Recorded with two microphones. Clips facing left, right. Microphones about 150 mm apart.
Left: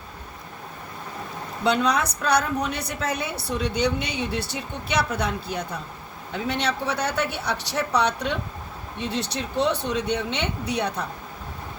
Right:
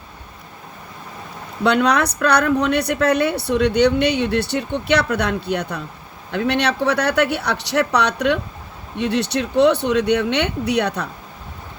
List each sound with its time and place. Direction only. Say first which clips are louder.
1.6 s speech: right 5 dB; 70° right (ahead or behind)